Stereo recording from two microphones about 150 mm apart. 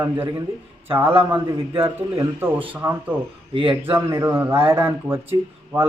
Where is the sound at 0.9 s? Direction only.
15° right (ahead or behind).